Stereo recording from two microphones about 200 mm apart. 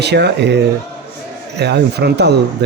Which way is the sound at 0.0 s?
55° right (ahead or behind).